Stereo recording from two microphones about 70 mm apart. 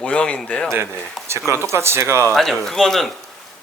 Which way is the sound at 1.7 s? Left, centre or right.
Right.